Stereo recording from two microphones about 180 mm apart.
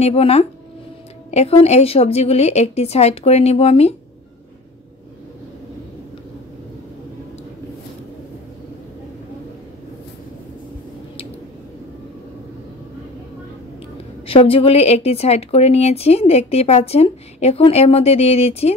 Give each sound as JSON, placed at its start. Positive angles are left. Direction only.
{"t": 0.0, "sound": "a woman's voice", "side_deg": 35}
{"t": 14.2, "sound": "a woman's voice", "side_deg": 30}